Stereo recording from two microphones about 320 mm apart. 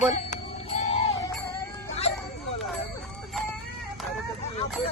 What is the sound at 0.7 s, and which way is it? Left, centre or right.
Jingle bell, centre.